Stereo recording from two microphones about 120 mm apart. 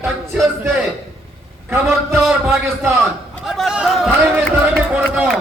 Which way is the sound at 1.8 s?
Centre (ahead or behind).